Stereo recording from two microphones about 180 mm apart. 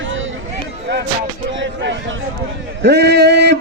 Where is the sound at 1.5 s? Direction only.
90° right.